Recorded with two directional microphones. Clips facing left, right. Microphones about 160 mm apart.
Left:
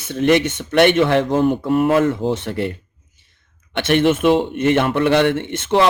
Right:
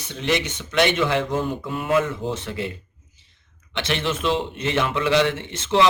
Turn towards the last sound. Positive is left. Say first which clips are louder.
# left 3 dB
turn(degrees=55)  # may be behind; listen again after turning